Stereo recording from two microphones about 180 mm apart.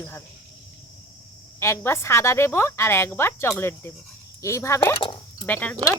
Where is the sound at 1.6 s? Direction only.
15° left (ahead or behind).